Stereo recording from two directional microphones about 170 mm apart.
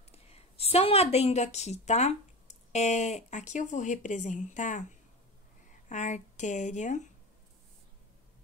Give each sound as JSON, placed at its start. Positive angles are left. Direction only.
{"t": 0.1, "sound": "a woman's voice", "side_deg": 35}